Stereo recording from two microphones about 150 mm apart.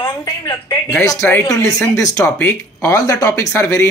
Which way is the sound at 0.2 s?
25° left (ahead or behind).